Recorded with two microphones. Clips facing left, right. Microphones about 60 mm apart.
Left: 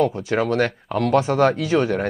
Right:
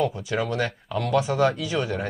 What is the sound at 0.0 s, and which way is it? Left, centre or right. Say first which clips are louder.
Speech: left 5 dB; left.